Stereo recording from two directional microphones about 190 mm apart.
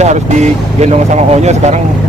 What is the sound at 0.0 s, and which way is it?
Speech, 35° right (ahead or behind).